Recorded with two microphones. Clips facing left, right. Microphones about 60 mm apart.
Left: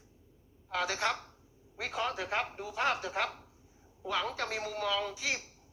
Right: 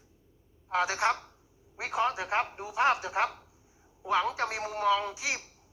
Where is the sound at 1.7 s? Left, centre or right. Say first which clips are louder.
Right 5 dB; centre.